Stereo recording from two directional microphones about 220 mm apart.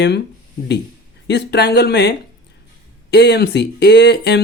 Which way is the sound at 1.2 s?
50° left (ahead or behind).